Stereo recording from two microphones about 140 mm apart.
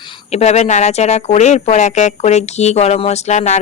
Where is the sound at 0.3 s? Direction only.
50° left (ahead or behind).